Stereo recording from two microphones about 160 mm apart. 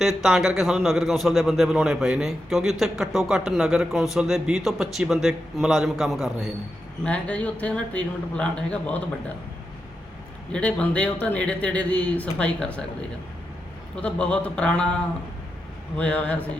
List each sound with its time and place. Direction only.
0.0 s a man's voice: centre (ahead or behind)
10.5 s speech: 10° left (ahead or behind)
16.0 s speech: 5° left (ahead or behind)